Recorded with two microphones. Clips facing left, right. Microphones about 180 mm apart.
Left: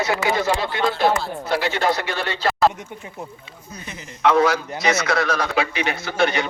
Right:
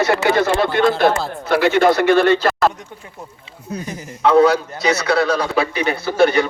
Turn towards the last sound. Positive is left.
turn(degrees=-35)  # may be behind; listen again after turning